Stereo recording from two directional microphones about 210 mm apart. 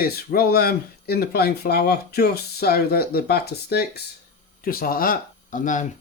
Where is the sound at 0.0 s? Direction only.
45° left (ahead or behind).